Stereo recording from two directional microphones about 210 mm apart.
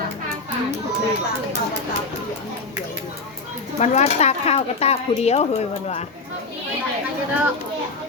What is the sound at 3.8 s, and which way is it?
Speech, 30° left (ahead or behind).